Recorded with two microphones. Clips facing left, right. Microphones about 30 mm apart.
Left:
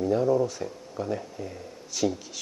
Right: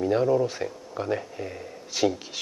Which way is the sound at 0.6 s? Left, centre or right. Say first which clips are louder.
Right 2 dB; right.